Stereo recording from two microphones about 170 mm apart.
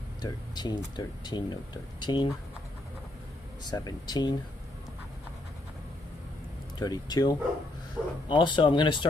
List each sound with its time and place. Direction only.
0.2 s speech: 25° left (ahead or behind)
3.6 s speech: 25° left (ahead or behind)
6.8 s speech: 25° left (ahead or behind)
8.0 s speech: 5° right (ahead or behind)
8.3 s speech: 25° left (ahead or behind)